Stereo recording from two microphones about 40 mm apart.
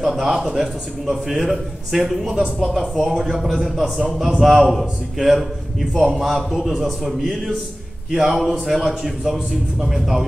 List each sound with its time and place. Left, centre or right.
0.2 s a man's voice: centre